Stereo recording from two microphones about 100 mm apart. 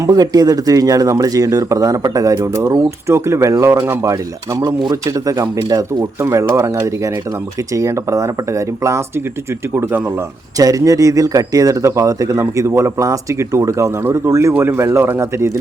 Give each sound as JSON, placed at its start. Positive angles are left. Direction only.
{"t": 0.0, "sound": "speech", "side_deg": -40}
{"t": 10.6, "sound": "speech", "side_deg": -35}